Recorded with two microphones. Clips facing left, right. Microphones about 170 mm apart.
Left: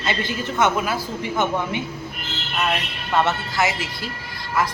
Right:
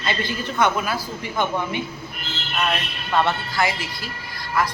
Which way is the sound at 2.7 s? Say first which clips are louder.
Left 1 dB; 20° left (ahead or behind).